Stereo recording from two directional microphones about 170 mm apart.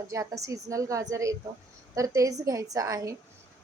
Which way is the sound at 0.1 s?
20° right (ahead or behind).